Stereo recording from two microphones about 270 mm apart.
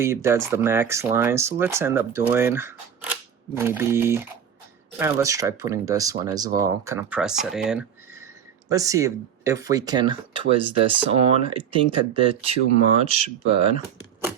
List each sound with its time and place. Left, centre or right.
0.0 s speech: centre